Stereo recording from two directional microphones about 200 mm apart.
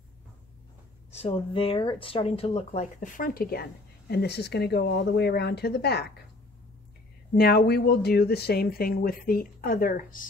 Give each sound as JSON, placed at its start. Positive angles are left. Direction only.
{"t": 1.1, "sound": "speech", "side_deg": 30}
{"t": 7.3, "sound": "speech", "side_deg": 50}